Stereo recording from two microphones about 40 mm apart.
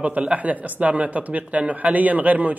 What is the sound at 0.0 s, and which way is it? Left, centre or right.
A man's voice, right.